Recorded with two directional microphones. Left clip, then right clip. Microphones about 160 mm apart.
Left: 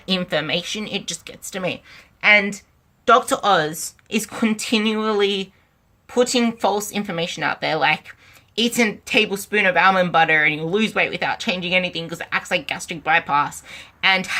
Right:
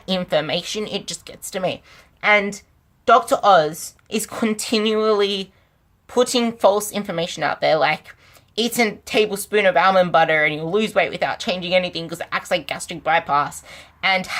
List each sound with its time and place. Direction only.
0.0 s speech: 25° right (ahead or behind)
2.2 s speech: 20° right (ahead or behind)